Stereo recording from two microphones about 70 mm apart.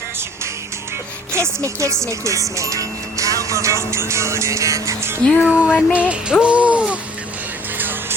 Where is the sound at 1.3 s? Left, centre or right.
Right.